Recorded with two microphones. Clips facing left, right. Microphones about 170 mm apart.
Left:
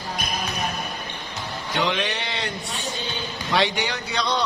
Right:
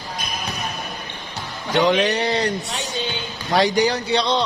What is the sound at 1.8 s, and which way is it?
Speech, 45° right (ahead or behind).